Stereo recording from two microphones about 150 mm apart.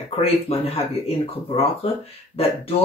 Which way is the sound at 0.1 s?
40° left (ahead or behind).